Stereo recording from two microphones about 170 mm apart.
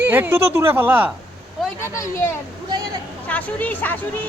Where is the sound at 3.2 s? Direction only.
10° left (ahead or behind).